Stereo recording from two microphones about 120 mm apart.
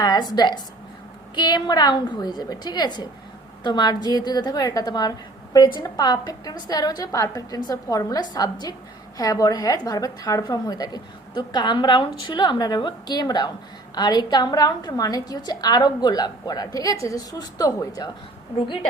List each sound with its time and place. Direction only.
0.0 s a woman's voice: 35° left (ahead or behind)